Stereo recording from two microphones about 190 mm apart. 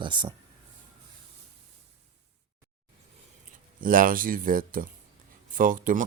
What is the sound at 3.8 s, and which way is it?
Speech, 45° right (ahead or behind).